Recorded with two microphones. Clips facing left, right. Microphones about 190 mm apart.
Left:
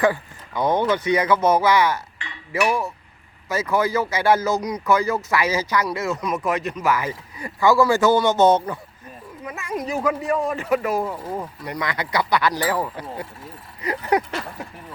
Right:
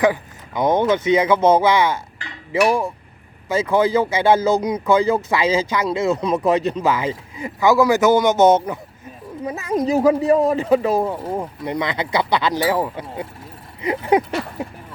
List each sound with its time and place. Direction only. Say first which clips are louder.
0.0 s speech: right 2 dB; 20° right (ahead or behind)
9.4 s speech: right 7 dB; 35° right (ahead or behind)
13.8 s a sound: right 4 dB; 20° right (ahead or behind)